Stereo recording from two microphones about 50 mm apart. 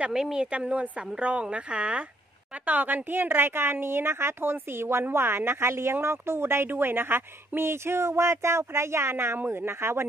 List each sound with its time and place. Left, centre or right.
0.1 s speech: centre
0.5 s a woman's voice: right
2.6 s a woman's voice: right